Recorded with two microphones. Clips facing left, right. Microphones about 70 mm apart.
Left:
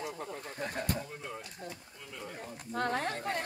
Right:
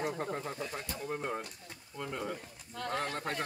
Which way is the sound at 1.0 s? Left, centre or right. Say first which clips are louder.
Right 6 dB; right.